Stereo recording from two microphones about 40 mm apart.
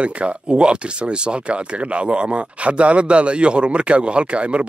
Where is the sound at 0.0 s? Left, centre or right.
Right.